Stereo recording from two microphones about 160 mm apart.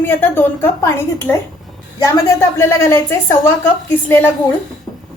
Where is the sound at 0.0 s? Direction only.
15° left (ahead or behind).